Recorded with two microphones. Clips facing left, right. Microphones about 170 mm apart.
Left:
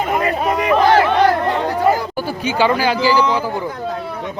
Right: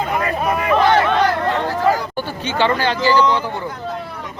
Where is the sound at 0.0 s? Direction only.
20° left (ahead or behind).